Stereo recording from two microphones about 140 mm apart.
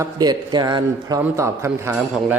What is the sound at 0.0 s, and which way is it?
A man's voice, 30° right (ahead or behind).